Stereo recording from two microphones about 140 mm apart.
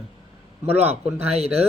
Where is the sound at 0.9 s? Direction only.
50° right (ahead or behind).